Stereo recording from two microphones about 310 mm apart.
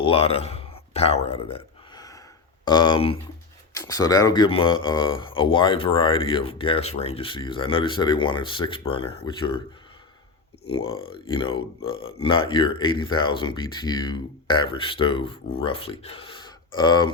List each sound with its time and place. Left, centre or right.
0.0 s a sound: centre
2.6 s speech: centre
10.8 s speech: centre